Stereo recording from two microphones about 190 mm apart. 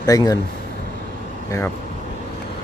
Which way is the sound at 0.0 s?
20° left (ahead or behind).